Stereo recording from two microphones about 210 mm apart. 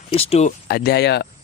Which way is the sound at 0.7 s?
50° left (ahead or behind).